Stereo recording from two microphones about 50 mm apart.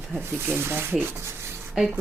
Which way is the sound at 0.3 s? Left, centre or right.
Right.